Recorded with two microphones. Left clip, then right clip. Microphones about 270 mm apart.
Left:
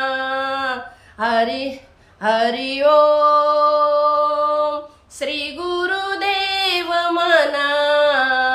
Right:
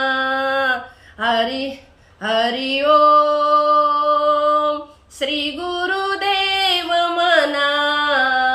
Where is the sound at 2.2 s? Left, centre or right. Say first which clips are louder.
Left 1 dB; centre.